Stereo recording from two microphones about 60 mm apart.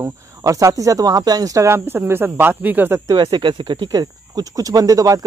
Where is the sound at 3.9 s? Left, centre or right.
Right.